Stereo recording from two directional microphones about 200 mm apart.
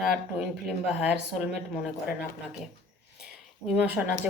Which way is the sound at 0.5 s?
5° right (ahead or behind).